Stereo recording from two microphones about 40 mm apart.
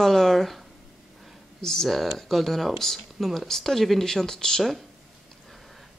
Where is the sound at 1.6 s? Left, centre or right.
Centre.